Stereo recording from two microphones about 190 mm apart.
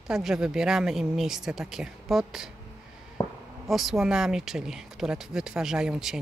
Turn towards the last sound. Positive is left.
turn(degrees=-5)  # may be behind; listen again after turning